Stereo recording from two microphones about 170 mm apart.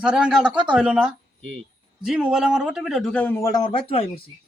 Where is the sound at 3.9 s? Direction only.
35° left (ahead or behind).